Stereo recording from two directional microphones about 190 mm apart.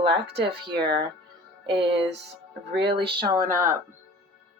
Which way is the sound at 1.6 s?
25° right (ahead or behind).